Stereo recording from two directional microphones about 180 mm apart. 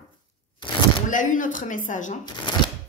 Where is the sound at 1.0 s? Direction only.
45° left (ahead or behind).